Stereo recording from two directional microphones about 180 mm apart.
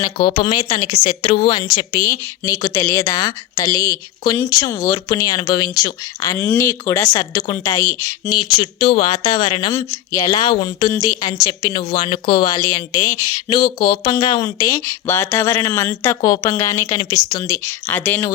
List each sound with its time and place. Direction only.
0.3 s speech: 30° left (ahead or behind)
8.4 s speech: 30° left (ahead or behind); by 18.3 s 10° left (ahead or behind)